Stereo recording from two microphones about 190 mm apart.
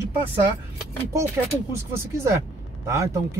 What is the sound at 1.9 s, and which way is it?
Speech, 15° right (ahead or behind).